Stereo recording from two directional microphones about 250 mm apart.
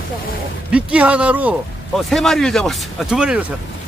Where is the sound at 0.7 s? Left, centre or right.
Centre.